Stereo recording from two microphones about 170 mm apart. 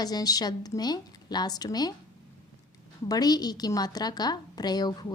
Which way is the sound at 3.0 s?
25° left (ahead or behind).